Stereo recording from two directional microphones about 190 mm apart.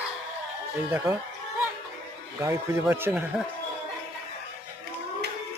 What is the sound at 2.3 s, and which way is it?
Speech, 15° right (ahead or behind).